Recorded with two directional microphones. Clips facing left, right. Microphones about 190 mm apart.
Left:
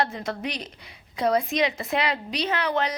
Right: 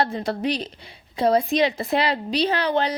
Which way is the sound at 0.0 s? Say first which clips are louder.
Right 4 dB; 35° right (ahead or behind).